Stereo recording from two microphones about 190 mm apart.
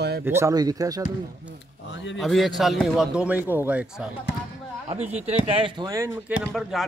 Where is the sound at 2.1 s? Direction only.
Centre (ahead or behind).